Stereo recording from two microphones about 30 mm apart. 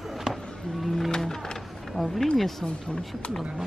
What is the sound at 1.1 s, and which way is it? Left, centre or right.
Music, centre.